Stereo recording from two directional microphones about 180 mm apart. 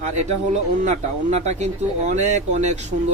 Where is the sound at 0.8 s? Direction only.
40° right (ahead or behind).